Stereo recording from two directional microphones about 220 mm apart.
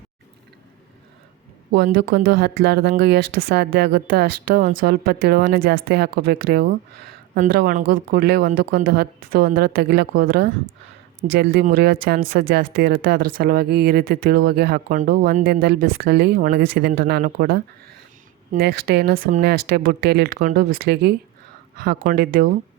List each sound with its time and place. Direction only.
1.7 s a woman's voice: 50° right (ahead or behind)